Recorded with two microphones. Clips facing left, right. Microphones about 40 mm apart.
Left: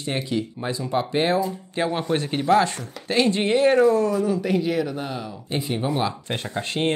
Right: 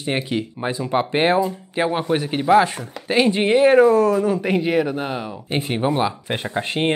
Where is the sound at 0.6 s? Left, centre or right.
Right.